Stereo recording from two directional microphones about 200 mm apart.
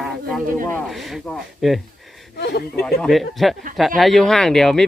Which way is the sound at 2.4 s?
55° left (ahead or behind).